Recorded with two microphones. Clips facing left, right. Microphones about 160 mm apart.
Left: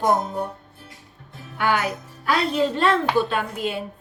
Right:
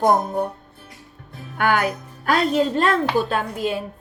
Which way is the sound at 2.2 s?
45° right (ahead or behind).